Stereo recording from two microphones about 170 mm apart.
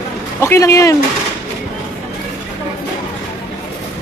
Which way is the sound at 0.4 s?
15° left (ahead or behind).